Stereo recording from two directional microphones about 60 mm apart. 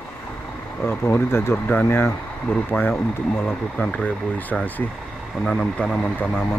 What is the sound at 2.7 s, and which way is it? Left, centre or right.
Speech, left.